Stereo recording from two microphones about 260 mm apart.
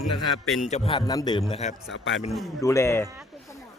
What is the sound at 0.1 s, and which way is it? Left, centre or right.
Speech, left.